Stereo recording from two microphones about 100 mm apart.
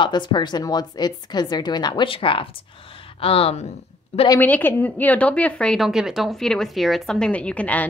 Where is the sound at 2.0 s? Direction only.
60° left (ahead or behind).